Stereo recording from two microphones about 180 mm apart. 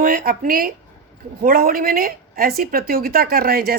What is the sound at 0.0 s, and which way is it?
Speech, 50° right (ahead or behind).